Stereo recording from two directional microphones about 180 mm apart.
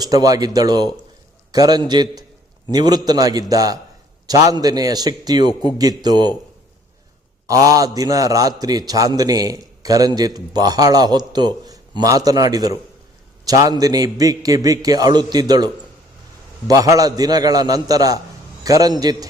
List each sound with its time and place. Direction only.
0.0 s a man's voice: 20° right (ahead or behind)
7.4 s a man's voice: 20° right (ahead or behind)